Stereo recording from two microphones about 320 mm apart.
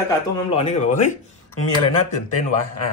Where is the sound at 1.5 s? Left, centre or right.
Left.